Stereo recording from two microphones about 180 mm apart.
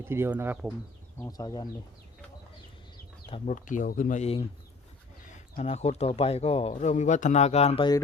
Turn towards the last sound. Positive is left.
turn(degrees=30)  # may be behind; listen again after turning